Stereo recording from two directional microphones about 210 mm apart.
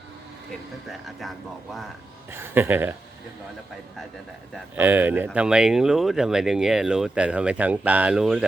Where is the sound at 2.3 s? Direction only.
10° right (ahead or behind).